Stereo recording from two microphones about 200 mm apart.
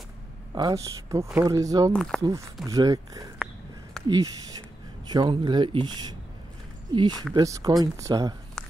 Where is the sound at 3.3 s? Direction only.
Centre (ahead or behind).